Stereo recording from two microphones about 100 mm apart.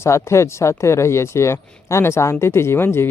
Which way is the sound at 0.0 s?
30° left (ahead or behind).